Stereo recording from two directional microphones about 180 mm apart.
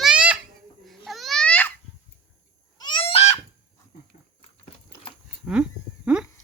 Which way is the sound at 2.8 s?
30° left (ahead or behind).